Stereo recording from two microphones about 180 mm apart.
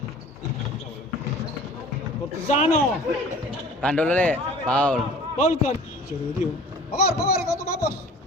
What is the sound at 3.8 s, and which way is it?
A man's voice, 5° left (ahead or behind).